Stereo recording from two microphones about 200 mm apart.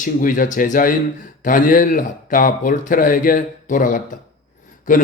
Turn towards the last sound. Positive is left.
turn(degrees=40)  # may be behind; listen again after turning